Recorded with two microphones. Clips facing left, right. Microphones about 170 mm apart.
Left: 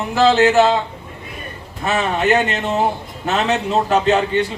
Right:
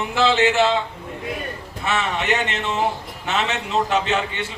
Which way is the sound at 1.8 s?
40° left (ahead or behind).